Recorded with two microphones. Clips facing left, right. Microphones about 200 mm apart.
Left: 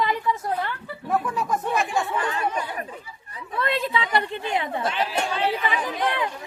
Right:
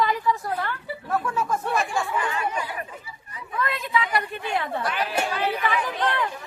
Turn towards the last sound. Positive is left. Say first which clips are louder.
# even
turn(degrees=15)  # may be behind; listen again after turning